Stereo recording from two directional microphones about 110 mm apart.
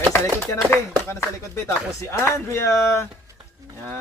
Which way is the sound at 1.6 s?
25° left (ahead or behind).